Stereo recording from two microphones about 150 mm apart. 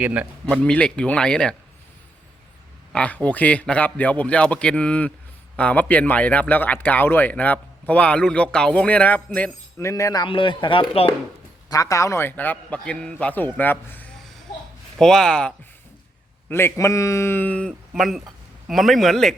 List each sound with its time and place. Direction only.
0.0 s speech: 10° right (ahead or behind)
0.4 s speech: 10° left (ahead or behind)
2.9 s speech: 10° left (ahead or behind); by 11.1 s 35° left (ahead or behind)
11.7 s a man's voice: 20° left (ahead or behind); by 19.4 s centre (ahead or behind)